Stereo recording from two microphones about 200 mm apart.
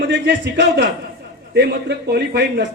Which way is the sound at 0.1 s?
60° right (ahead or behind).